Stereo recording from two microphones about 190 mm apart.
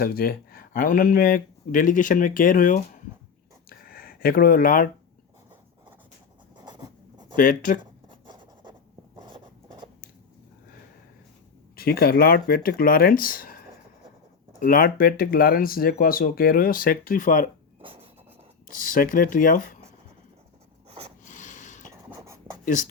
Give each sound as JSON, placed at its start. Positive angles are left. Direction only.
{"t": 0.0, "sound": "speech", "side_deg": 50}
{"t": 3.7, "sound": "a sound", "side_deg": 50}
{"t": 6.7, "sound": "writing", "side_deg": -20}
{"t": 7.3, "sound": "speech", "side_deg": 45}
{"t": 8.1, "sound": "writing", "side_deg": -25}
{"t": 11.8, "sound": "speech", "side_deg": 55}
{"t": 14.6, "sound": "speech", "side_deg": 50}
{"t": 17.8, "sound": "writing", "side_deg": -30}
{"t": 18.9, "sound": "speech", "side_deg": 45}
{"t": 21.2, "sound": "a sound", "side_deg": 40}
{"t": 22.1, "sound": "writing", "side_deg": -15}